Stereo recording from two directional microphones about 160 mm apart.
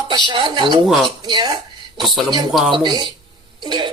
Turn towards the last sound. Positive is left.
turn(degrees=-30)  # may be behind; listen again after turning